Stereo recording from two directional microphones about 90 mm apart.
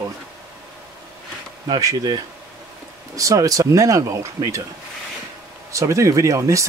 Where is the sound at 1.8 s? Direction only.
45° right (ahead or behind).